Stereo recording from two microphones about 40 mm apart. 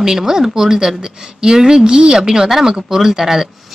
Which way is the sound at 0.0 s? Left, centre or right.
Centre.